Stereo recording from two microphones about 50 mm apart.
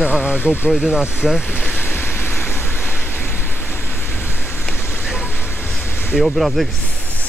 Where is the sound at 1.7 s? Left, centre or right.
Left.